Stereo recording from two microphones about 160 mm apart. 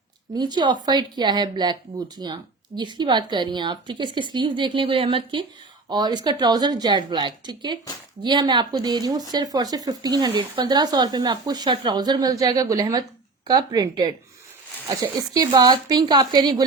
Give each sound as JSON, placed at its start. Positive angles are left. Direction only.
{"t": 0.3, "sound": "speech", "side_deg": -25}